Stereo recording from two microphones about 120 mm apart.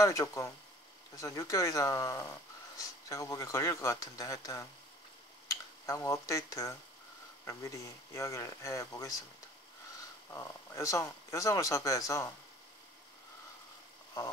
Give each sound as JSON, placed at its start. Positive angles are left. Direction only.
{"t": 0.0, "sound": "speech", "side_deg": 25}
{"t": 10.3, "sound": "speech", "side_deg": 25}